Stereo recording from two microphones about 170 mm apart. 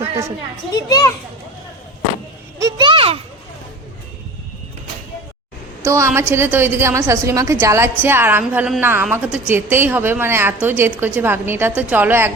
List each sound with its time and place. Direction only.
0.7 s a child's voice: 20° left (ahead or behind)
2.6 s a sound: 20° right (ahead or behind)
5.8 s a woman's voice: 15° right (ahead or behind)